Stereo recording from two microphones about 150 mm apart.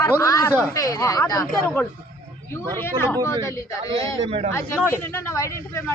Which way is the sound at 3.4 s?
20° left (ahead or behind).